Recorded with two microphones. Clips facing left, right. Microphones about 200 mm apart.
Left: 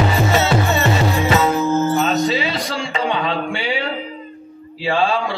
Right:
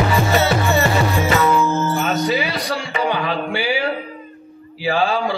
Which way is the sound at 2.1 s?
25° left (ahead or behind).